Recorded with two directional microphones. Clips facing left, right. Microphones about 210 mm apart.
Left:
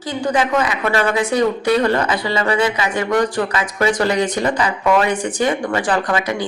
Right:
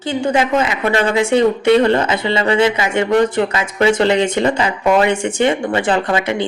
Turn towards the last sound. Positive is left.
turn(degrees=-25)  # may be behind; listen again after turning